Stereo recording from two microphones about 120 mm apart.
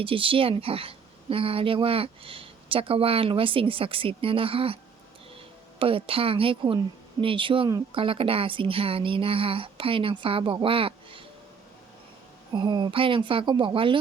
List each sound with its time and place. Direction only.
0.0 s speech: 50° right (ahead or behind)
5.8 s speech: 50° right (ahead or behind)
12.5 s speech: 40° right (ahead or behind)